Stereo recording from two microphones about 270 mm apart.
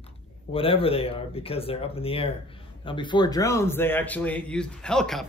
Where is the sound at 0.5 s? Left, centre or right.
Centre.